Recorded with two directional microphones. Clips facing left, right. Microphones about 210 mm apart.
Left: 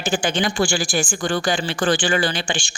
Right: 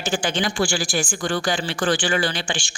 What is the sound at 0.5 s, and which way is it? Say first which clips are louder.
Speech: left 2 dB; 20° left (ahead or behind).